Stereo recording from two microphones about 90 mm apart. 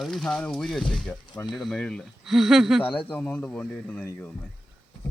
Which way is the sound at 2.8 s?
75° left (ahead or behind).